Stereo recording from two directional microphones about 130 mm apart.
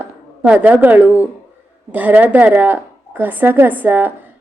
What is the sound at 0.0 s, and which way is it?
A woman's voice, 10° right (ahead or behind).